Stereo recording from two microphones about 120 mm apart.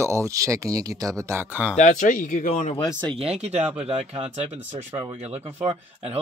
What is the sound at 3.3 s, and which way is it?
Speech, 60° right (ahead or behind).